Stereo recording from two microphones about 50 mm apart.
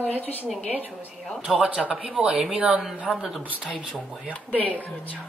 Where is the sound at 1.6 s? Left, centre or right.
Right; by 3.4 s centre.